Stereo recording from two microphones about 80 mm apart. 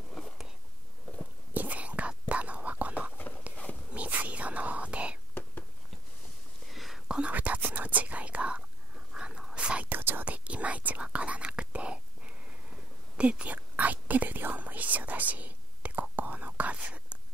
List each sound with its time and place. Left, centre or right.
1.5 s whispering: right
3.5 s a sound: centre
3.9 s whispering: centre
6.7 s whispering: centre
7.1 s whispering: centre